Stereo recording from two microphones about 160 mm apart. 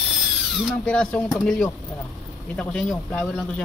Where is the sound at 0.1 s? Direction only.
Centre (ahead or behind).